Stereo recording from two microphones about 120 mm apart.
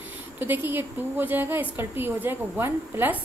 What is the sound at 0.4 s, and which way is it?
A woman's voice, 15° right (ahead or behind).